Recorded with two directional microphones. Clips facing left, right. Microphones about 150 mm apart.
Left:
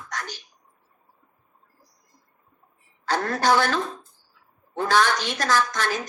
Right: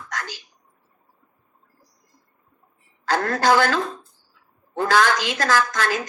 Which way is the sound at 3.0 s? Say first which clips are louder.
Right 3 dB; 90° right.